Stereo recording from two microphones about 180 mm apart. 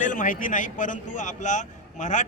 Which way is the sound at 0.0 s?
45° left (ahead or behind).